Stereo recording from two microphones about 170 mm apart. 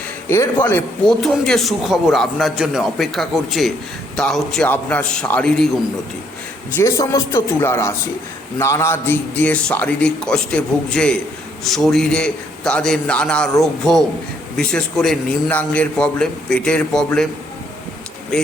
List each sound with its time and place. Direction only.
0.3 s a man's voice: 15° left (ahead or behind)
6.7 s a man's voice: 20° left (ahead or behind)